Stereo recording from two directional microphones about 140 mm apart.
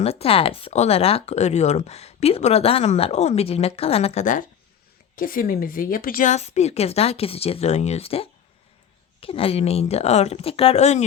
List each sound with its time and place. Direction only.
0.0 s speech: 45° left (ahead or behind); by 4.4 s 60° left (ahead or behind)
5.1 s a woman's voice: 90° left
6.3 s speech: 55° left (ahead or behind)